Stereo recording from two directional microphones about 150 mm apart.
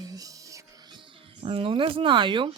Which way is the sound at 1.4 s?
35° right (ahead or behind).